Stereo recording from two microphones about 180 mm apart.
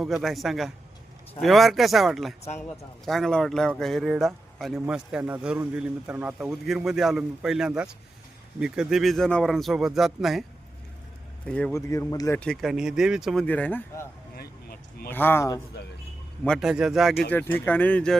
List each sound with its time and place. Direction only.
0.0 s speech: centre (ahead or behind)
11.4 s speech: 5° left (ahead or behind)
11.7 s speech: 15° left (ahead or behind)
12.4 s speech: centre (ahead or behind)
14.3 s a sound: 55° left (ahead or behind)
15.1 s speech: 10° left (ahead or behind)
16.4 s speech: centre (ahead or behind)